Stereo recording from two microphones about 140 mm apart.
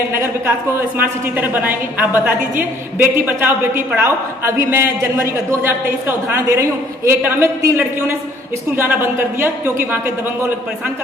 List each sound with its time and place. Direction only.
0.7 s a woman's voice: 15° right (ahead or behind)